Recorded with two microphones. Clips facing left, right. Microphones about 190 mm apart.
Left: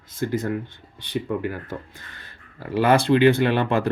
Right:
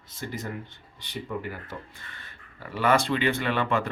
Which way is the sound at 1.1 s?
55° left (ahead or behind).